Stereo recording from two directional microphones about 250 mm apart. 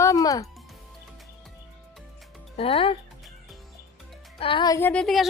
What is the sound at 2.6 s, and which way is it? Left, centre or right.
Speech, left.